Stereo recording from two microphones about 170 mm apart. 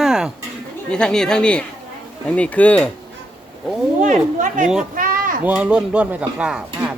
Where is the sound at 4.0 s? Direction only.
50° right (ahead or behind).